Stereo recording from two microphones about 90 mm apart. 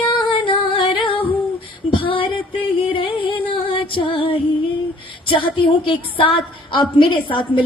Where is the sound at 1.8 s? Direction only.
75° left (ahead or behind).